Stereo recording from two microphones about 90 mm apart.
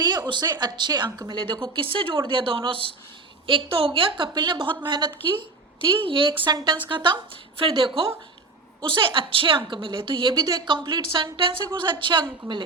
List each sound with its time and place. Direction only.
0.0 s speech: 50° right (ahead or behind)
1.3 s a woman's voice: 65° right (ahead or behind)
6.1 s a woman's voice: 75° right (ahead or behind)